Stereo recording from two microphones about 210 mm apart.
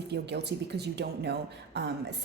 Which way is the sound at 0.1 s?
55° right (ahead or behind).